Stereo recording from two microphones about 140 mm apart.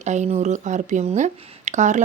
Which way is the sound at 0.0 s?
55° right (ahead or behind).